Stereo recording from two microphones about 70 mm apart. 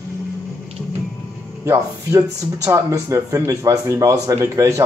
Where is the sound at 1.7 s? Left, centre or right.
Right.